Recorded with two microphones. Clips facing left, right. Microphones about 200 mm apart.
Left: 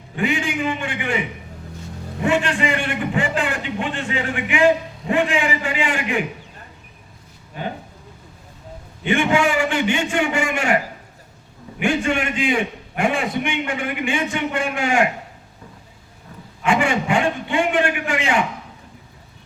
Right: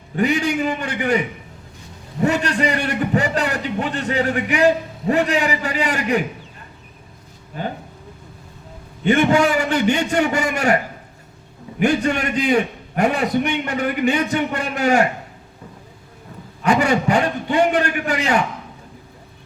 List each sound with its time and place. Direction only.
0.2 s a man's voice: 40° right (ahead or behind)
2.2 s a man's voice: 40° right (ahead or behind)
9.0 s a man's voice: 40° right (ahead or behind)
11.8 s a man's voice: 40° right (ahead or behind)
16.6 s a man's voice: 40° right (ahead or behind)